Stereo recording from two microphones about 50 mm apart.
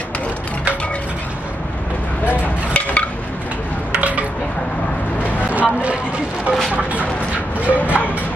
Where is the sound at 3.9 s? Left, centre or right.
Right.